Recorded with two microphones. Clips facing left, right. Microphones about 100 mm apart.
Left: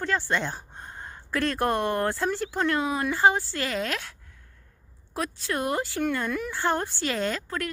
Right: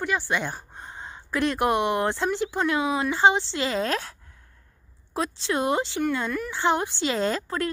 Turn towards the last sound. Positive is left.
turn(degrees=-30)  # may be behind; listen again after turning